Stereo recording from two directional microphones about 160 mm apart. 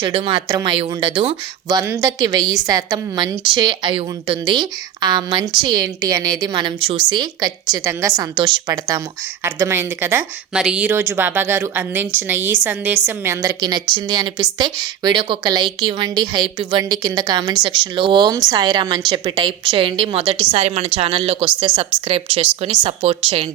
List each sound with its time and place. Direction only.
0.0 s a woman's voice: 35° right (ahead or behind)
1.6 s a woman's voice: 20° right (ahead or behind); by 23.5 s 35° right (ahead or behind)